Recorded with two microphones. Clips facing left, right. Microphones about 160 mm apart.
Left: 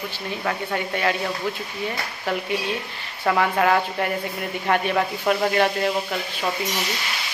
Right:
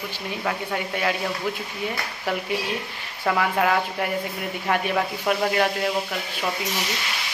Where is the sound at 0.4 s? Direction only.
5° right (ahead or behind).